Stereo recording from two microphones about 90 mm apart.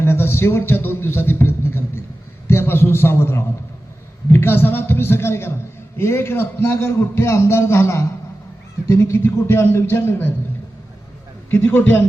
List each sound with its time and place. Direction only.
0.0 s a sound: 25° left (ahead or behind)
2.5 s a man's voice: 25° left (ahead or behind)
11.5 s a man's voice: 20° left (ahead or behind)